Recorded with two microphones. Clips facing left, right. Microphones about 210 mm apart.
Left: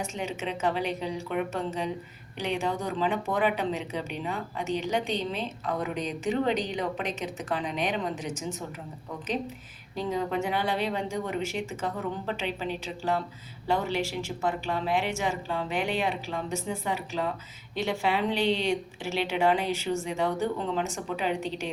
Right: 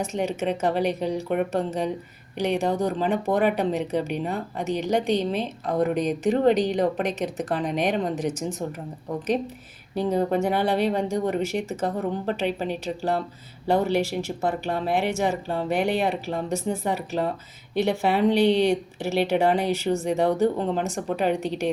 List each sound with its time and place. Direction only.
0.2 s speech: 40° right (ahead or behind)
10.1 s speech: 40° right (ahead or behind)